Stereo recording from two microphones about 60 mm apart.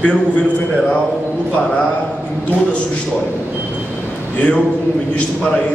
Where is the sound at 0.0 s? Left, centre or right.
Centre.